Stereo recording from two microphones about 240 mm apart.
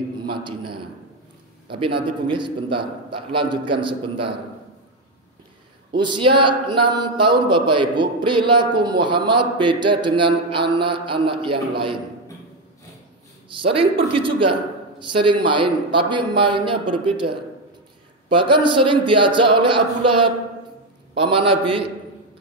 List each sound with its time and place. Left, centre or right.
0.3 s speech: centre
2.0 s speech: right
5.9 s speech: centre
13.6 s speech: right
21.2 s speech: right